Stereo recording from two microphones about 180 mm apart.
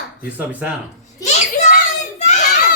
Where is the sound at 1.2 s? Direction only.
45° left (ahead or behind).